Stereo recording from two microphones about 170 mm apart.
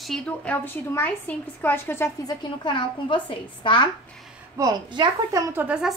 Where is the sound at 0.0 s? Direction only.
Centre (ahead or behind); by 3.9 s 30° left (ahead or behind).